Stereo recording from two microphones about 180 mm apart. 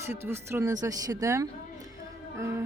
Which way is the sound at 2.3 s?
15° right (ahead or behind).